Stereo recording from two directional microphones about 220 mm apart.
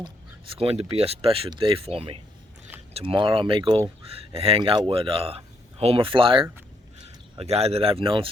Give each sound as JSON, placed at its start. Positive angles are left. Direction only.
{"t": 0.5, "sound": "speech", "side_deg": -25}